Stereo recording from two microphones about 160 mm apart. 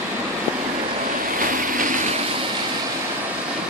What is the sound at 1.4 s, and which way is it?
Vehicle, 55° right (ahead or behind).